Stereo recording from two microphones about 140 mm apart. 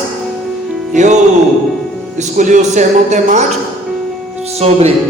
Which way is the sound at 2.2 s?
60° right (ahead or behind).